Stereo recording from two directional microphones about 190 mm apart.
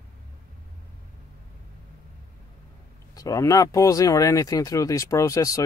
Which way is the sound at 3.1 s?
20° left (ahead or behind).